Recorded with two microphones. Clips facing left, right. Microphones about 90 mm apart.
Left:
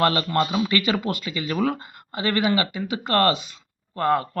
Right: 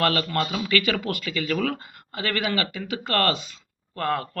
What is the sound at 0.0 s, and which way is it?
Speech, 25° left (ahead or behind).